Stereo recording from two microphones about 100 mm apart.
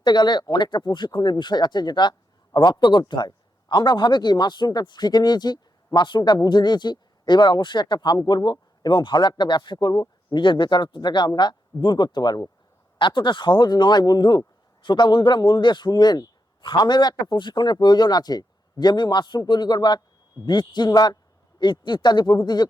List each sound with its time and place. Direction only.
0.0 s speech: 50° left (ahead or behind)